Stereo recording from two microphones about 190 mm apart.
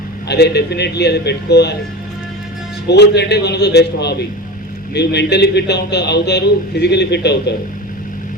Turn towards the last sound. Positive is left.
turn(degrees=60)  # may be behind; listen again after turning